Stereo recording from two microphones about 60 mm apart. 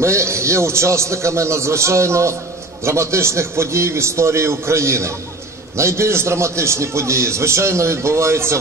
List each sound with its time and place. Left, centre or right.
0.0 s a man's voice: right